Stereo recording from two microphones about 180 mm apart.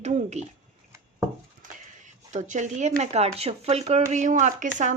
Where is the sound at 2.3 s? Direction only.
40° right (ahead or behind).